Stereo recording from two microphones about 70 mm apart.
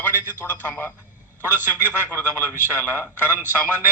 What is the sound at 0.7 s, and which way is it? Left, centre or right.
Speech, left.